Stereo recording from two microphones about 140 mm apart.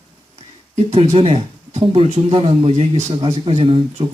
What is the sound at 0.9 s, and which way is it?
Speech, 45° right (ahead or behind).